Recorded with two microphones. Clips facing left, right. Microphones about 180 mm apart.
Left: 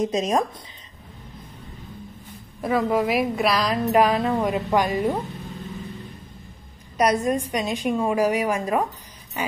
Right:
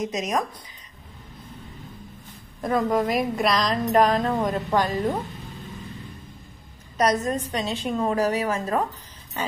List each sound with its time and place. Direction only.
0.0 s a woman's voice: 30° left (ahead or behind)
2.6 s a woman's voice: 5° left (ahead or behind)
7.0 s a woman's voice: 10° left (ahead or behind)